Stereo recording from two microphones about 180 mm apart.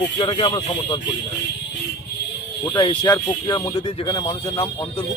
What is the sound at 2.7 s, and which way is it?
Speech, 25° left (ahead or behind).